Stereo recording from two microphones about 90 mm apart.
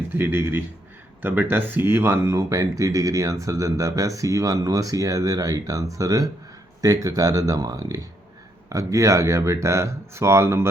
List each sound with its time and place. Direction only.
0.1 s speech: 25° right (ahead or behind)